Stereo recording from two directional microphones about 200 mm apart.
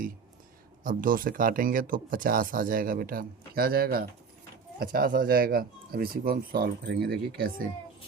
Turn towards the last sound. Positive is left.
turn(degrees=-50)  # may be behind; listen again after turning